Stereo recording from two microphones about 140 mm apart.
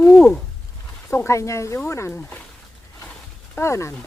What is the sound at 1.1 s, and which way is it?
Speech, 20° left (ahead or behind).